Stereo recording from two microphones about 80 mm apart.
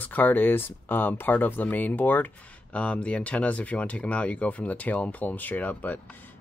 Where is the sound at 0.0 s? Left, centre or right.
Left.